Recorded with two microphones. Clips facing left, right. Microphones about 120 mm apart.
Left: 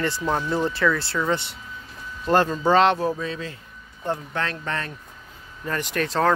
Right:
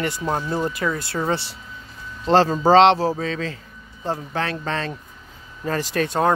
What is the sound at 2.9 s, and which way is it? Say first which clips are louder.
Speech: right 2 dB; 30° right (ahead or behind).